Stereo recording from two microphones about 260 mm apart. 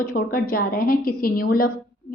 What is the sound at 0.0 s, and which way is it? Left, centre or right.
A woman's voice, left.